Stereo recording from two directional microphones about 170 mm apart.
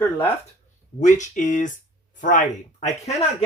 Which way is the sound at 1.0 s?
45° left (ahead or behind).